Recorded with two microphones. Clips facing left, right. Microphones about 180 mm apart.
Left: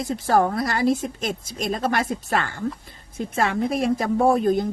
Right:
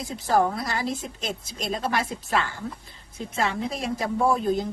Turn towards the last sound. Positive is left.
turn(degrees=55)  # may be behind; listen again after turning